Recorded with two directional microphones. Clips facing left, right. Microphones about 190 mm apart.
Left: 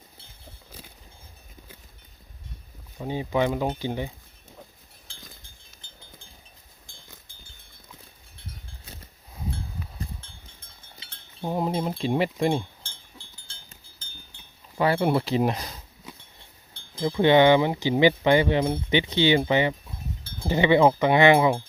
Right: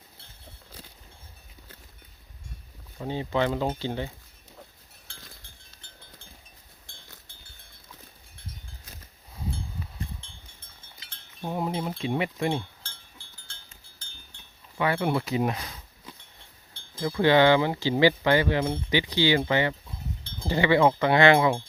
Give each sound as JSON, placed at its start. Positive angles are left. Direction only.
{"t": 3.0, "sound": "speech", "side_deg": 15}
{"t": 11.5, "sound": "a sound", "side_deg": 35}
{"t": 11.9, "sound": "speech", "side_deg": 35}
{"t": 12.8, "sound": "sheep", "side_deg": 15}
{"t": 14.8, "sound": "speech", "side_deg": 30}
{"t": 16.7, "sound": "speech", "side_deg": 15}